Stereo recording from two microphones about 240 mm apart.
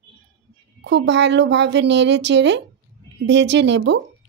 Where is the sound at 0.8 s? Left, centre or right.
Right.